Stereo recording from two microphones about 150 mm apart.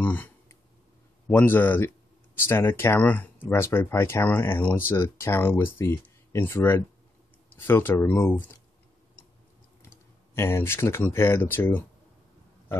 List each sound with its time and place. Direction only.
0.0 s clicking: 10° left (ahead or behind)
1.2 s speech: 15° left (ahead or behind)
10.3 s speech: 15° left (ahead or behind)